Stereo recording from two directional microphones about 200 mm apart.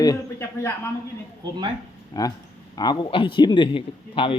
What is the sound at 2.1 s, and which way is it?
A man's voice, 15° left (ahead or behind).